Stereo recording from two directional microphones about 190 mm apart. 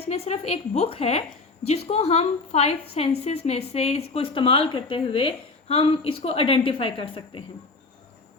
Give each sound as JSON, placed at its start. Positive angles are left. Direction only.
{"t": 0.0, "sound": "a woman's voice", "side_deg": 35}